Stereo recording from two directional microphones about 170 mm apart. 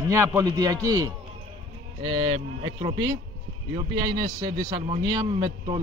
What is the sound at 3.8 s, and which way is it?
A man's voice, 25° right (ahead or behind).